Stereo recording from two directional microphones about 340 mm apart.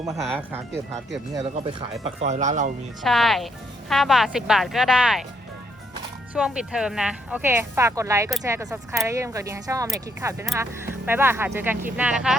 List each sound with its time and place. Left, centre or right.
0.0 s speech: centre
1.3 s speech: centre
3.0 s speech: centre
6.3 s speech: centre